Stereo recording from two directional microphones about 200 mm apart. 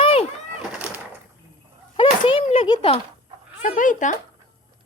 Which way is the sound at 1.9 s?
25° left (ahead or behind).